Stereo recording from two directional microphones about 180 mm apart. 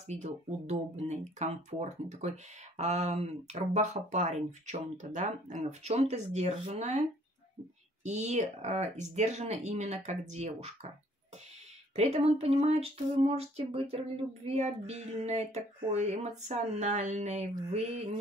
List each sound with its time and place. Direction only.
0.0 s speech: 40° right (ahead or behind)
11.9 s speech: 35° right (ahead or behind)